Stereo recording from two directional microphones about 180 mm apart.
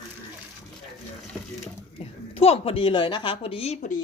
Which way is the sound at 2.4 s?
35° left (ahead or behind).